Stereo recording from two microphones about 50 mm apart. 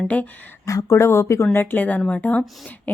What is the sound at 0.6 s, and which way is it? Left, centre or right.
Speech, left.